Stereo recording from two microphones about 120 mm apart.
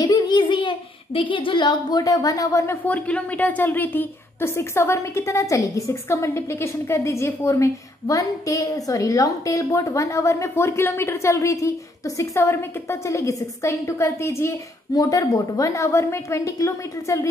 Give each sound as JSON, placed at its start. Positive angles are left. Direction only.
{"t": 0.0, "sound": "a child's voice", "side_deg": 35}